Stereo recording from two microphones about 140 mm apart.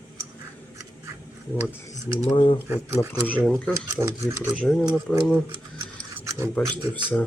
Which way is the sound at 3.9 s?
20° right (ahead or behind).